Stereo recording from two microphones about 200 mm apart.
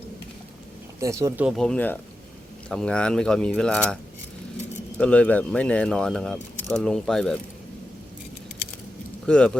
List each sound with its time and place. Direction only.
0.9 s speech: 15° right (ahead or behind)
1.5 s speech: 5° left (ahead or behind)
4.9 s speech: 5° left (ahead or behind)
9.2 s speech: 5° left (ahead or behind)